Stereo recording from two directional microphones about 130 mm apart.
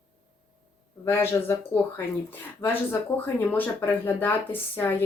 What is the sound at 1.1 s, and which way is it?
Speech, 20° left (ahead or behind).